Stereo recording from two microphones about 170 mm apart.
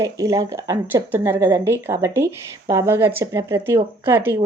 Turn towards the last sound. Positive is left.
turn(degrees=-15)  # may be behind; listen again after turning